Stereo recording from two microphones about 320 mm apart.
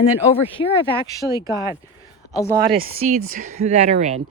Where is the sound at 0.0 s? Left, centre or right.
Centre.